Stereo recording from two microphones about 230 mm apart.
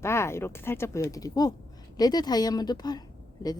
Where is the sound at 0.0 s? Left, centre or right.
Centre.